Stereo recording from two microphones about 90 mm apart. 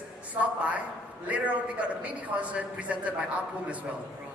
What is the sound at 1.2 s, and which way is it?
A man's voice, 15° right (ahead or behind).